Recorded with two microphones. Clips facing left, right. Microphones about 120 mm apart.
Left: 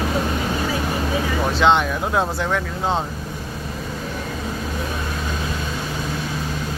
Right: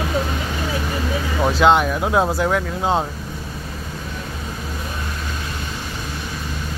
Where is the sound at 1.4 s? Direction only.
5° right (ahead or behind).